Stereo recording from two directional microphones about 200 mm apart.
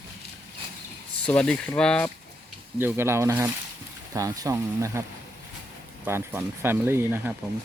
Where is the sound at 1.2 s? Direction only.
5° left (ahead or behind).